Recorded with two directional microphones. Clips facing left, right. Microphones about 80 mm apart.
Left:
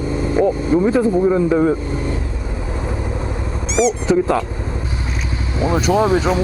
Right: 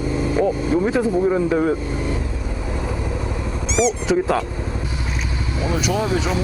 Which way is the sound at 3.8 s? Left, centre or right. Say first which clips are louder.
Left 3 dB; centre.